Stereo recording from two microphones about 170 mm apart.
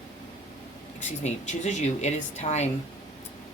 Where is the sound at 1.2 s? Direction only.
40° left (ahead or behind).